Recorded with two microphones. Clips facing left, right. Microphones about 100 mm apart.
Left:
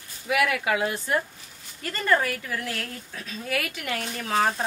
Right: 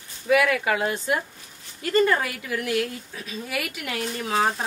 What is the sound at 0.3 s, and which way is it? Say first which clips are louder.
Speech: right 3 dB; 35° right (ahead or behind).